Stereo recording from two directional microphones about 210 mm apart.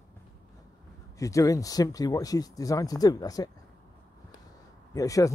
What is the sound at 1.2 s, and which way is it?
Speech, 15° left (ahead or behind).